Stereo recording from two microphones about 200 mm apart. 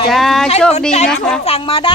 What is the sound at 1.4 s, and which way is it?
Speech, 30° left (ahead or behind).